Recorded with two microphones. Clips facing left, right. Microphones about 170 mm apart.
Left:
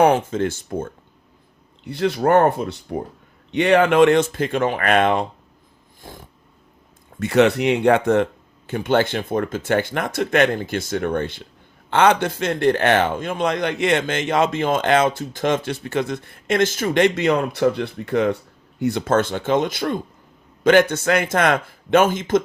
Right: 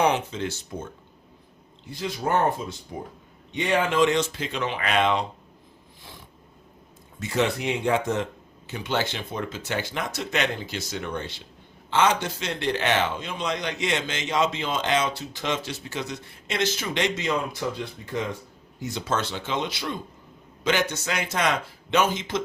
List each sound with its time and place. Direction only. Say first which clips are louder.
0.0 s a man's voice: left 7 dB; 50° left (ahead or behind)
1.8 s a man's voice: left 9 dB; 65° left (ahead or behind)
6.0 s a sound: left 8 dB; 50° left (ahead or behind)
7.2 s a man's voice: left 9 dB; 65° left (ahead or behind); by 22.4 s 50° left (ahead or behind)